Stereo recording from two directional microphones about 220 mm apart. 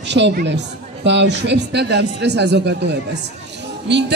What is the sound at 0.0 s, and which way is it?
A woman's voice, 50° right (ahead or behind).